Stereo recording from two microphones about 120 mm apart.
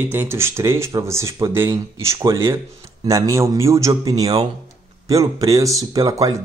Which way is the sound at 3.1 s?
25° right (ahead or behind).